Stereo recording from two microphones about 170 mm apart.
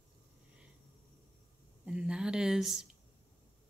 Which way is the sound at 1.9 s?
5° right (ahead or behind).